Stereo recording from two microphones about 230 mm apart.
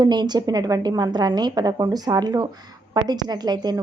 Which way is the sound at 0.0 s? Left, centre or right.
Centre.